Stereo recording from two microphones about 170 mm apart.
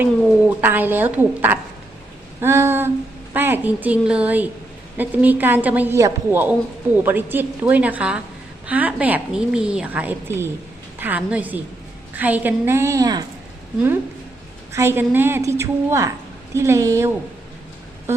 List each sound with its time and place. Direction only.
0.0 s a woman's voice: 10° right (ahead or behind)
14.7 s a woman's voice: 15° right (ahead or behind)